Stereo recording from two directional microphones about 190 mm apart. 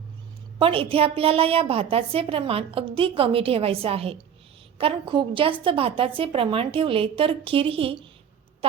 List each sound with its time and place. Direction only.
0.6 s a woman's voice: 30° right (ahead or behind)